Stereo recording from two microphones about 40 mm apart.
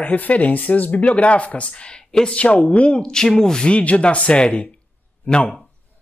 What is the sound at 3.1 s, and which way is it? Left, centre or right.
Speech, centre.